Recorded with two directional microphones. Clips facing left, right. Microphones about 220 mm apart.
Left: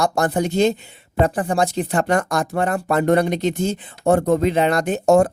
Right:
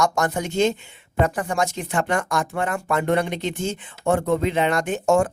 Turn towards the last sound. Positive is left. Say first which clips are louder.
# left 4 dB
turn(degrees=40)  # may be behind; listen again after turning